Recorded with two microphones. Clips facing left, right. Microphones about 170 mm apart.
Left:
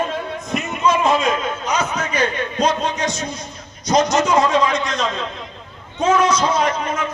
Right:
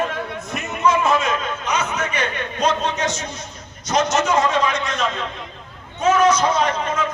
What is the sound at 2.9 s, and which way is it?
Speech, 35° left (ahead or behind).